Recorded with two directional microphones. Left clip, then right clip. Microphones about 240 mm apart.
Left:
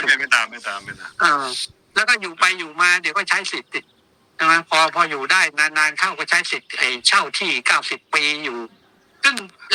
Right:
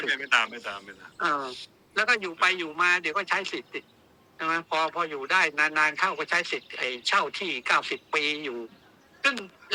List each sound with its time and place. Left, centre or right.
0.0 s a man's voice: left